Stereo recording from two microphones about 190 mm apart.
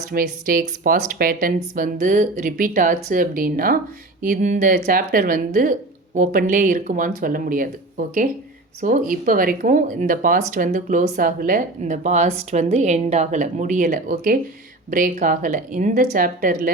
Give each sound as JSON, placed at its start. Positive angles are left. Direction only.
{"t": 0.1, "sound": "speech", "side_deg": -50}